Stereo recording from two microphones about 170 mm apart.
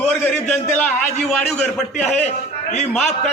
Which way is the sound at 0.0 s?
5° left (ahead or behind).